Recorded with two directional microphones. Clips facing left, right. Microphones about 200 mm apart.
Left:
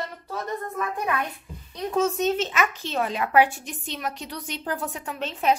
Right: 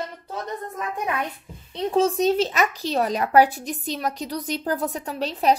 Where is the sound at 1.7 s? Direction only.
30° right (ahead or behind).